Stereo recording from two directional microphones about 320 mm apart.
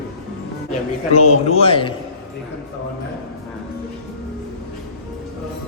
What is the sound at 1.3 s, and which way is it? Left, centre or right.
Speech, centre.